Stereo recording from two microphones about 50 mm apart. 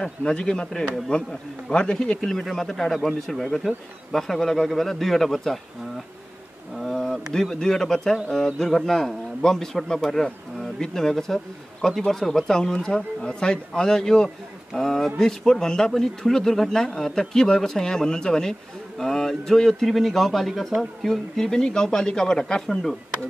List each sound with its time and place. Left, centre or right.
0.0 s a man's voice: centre
6.8 s insect: centre
7.3 s a man's voice: centre